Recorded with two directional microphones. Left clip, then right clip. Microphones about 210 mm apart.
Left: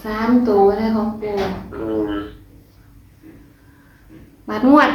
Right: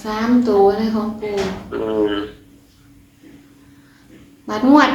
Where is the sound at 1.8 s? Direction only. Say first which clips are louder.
Right 3 dB; 50° right (ahead or behind).